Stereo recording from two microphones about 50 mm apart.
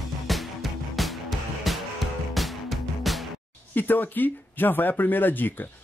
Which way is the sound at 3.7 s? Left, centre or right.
Left.